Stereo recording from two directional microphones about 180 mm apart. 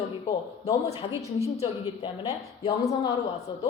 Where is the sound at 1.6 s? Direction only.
30° left (ahead or behind).